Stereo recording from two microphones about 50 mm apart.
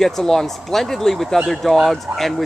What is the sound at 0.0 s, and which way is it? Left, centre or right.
Speech, centre.